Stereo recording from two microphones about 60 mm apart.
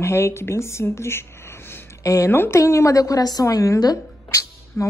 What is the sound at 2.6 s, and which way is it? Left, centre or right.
Speech, left.